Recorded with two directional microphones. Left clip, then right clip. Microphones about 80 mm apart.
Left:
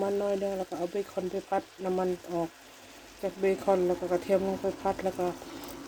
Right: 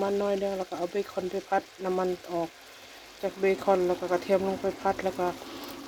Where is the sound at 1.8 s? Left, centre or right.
Centre.